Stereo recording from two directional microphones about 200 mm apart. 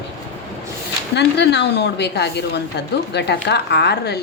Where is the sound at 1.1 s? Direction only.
60° left (ahead or behind).